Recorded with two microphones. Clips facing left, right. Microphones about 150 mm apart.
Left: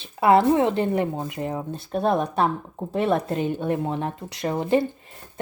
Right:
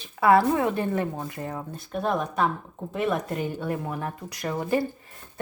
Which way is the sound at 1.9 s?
35° left (ahead or behind).